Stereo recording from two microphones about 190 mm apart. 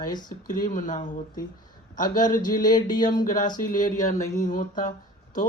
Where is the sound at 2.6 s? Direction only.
20° left (ahead or behind).